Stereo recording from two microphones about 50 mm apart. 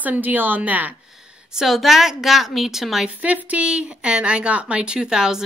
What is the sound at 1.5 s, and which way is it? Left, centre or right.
A woman's voice, centre.